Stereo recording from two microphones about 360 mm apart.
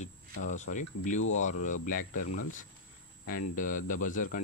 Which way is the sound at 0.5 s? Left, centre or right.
Left.